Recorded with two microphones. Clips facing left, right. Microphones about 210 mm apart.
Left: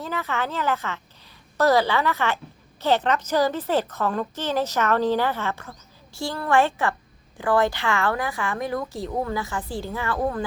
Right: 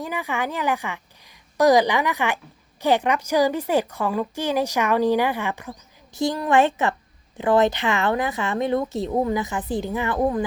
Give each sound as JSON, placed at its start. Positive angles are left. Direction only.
{"t": 0.0, "sound": "a woman's voice", "side_deg": -15}